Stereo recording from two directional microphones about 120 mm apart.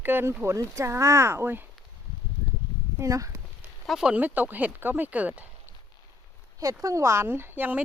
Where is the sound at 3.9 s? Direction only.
5° right (ahead or behind).